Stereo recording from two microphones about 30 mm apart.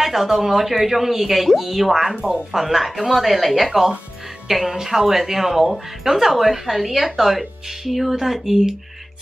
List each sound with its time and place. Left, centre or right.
0.0 s speech: centre
4.5 s speech: centre